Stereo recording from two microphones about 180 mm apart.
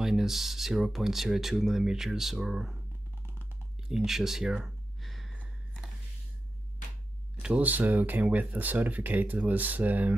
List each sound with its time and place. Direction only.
0.0 s speech: centre (ahead or behind)
3.9 s a sound: centre (ahead or behind)
7.4 s speech: 10° right (ahead or behind)